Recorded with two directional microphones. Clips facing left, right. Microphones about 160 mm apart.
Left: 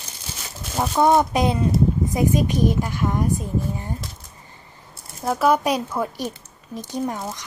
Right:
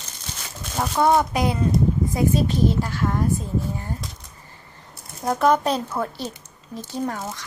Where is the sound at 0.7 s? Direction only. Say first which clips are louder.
Left 2 dB; 10° left (ahead or behind).